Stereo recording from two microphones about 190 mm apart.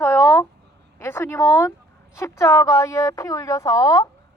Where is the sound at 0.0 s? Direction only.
15° left (ahead or behind).